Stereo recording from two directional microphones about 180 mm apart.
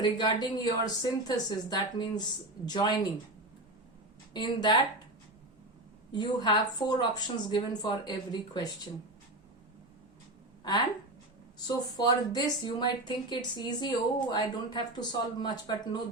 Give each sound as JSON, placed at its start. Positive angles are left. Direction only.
{"t": 0.0, "sound": "speech", "side_deg": 25}
{"t": 4.4, "sound": "speech", "side_deg": 25}
{"t": 6.1, "sound": "speech", "side_deg": 25}
{"t": 10.6, "sound": "speech", "side_deg": 25}